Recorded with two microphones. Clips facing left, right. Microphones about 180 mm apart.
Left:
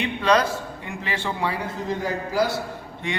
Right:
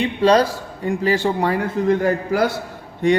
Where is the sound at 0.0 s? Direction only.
35° right (ahead or behind); by 2.5 s 60° right (ahead or behind).